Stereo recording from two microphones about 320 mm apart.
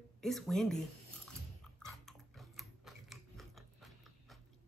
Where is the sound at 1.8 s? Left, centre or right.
Centre.